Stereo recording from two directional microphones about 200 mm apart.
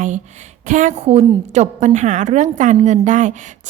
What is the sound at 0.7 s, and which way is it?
Speech, 40° right (ahead or behind).